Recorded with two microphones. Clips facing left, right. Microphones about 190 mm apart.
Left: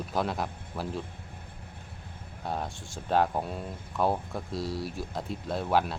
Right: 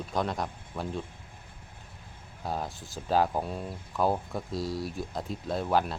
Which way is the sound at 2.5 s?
Centre (ahead or behind).